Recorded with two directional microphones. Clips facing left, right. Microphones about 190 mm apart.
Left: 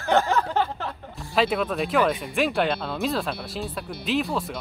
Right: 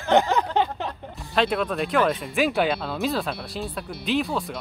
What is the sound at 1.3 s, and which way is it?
Speech, centre (ahead or behind).